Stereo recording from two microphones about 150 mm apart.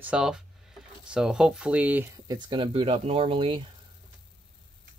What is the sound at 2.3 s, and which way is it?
Speech, 30° right (ahead or behind).